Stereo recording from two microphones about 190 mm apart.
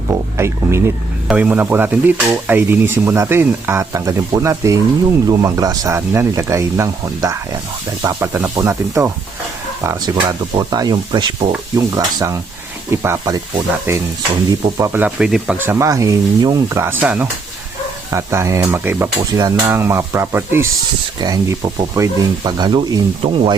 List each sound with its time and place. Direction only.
0.1 s speech: 15° right (ahead or behind)